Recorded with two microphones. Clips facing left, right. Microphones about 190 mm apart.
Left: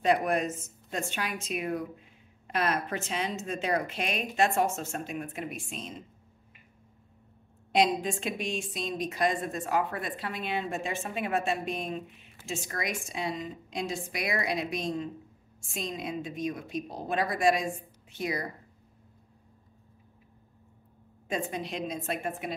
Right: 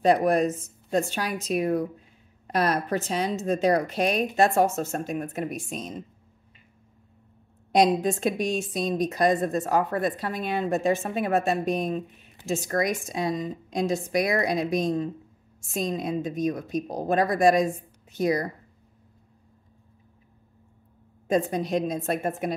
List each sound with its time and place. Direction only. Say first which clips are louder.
0.0 s a woman's voice: right 6 dB; 35° right (ahead or behind)
7.7 s a woman's voice: right 5 dB; 40° right (ahead or behind)
21.3 s a woman's voice: right 9 dB; 40° right (ahead or behind)